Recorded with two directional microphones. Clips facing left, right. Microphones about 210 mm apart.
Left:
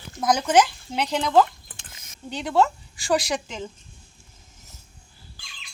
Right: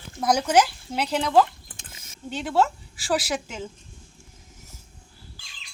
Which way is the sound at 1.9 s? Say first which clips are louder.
Right 2 dB; 25° right (ahead or behind).